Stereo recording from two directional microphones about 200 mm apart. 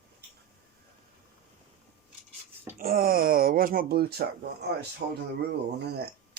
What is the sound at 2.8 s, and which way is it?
Speech, 45° right (ahead or behind).